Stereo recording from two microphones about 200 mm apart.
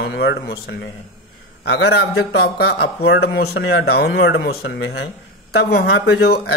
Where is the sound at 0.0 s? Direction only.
60° left (ahead or behind).